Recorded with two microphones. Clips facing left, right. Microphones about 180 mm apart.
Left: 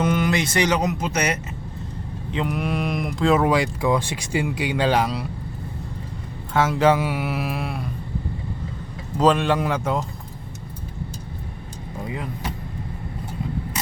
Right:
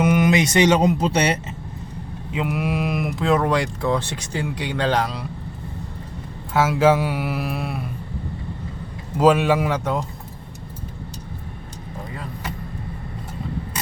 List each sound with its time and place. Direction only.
0.0 s speech: 15° right (ahead or behind)
2.3 s speech: 5° right (ahead or behind)
6.5 s speech: 5° right (ahead or behind)
9.1 s speech: 10° right (ahead or behind)